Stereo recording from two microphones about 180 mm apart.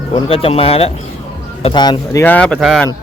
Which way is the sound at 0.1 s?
30° left (ahead or behind).